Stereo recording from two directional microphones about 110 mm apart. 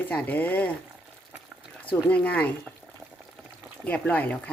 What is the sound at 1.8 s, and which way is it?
Speech, 15° left (ahead or behind).